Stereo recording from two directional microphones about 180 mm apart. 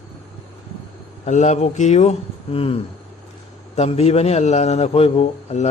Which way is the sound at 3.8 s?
35° left (ahead or behind).